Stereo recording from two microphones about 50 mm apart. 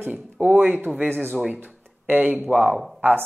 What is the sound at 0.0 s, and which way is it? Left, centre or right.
Speech, right.